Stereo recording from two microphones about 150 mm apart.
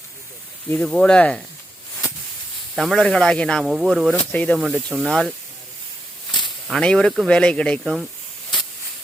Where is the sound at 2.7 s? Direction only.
Centre (ahead or behind).